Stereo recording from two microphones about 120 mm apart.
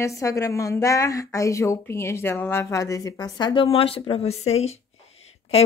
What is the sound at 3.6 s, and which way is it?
Speech, 50° left (ahead or behind).